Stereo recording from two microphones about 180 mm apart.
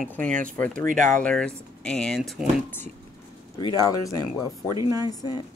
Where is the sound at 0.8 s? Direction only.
50° right (ahead or behind).